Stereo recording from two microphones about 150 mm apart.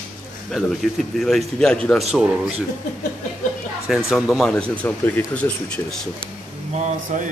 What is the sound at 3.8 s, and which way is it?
Speech, 5° right (ahead or behind).